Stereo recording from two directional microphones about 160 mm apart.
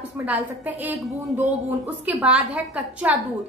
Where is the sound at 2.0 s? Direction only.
5° right (ahead or behind).